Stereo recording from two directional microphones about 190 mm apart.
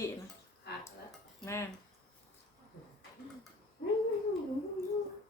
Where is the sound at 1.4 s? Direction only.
15° left (ahead or behind).